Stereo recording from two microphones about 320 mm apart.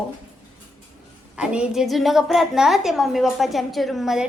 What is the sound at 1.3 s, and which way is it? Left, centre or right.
A woman's voice, centre.